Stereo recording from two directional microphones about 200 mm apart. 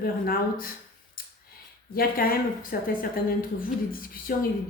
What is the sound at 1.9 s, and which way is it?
Speech, 45° left (ahead or behind).